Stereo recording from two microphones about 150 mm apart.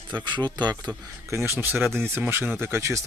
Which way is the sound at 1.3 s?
15° right (ahead or behind).